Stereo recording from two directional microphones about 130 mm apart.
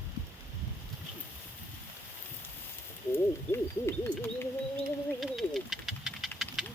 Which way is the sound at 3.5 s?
15° left (ahead or behind).